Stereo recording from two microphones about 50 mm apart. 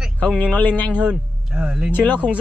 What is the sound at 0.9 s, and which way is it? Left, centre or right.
Speech, right.